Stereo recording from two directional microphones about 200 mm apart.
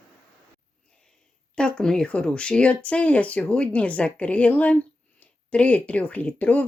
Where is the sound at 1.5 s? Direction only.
5° left (ahead or behind).